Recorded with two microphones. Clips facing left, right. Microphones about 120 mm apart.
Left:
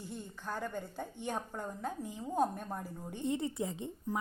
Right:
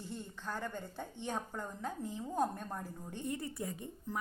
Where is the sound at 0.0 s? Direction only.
15° left (ahead or behind).